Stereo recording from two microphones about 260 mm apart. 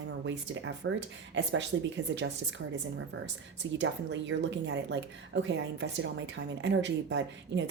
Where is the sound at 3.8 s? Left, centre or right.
Right.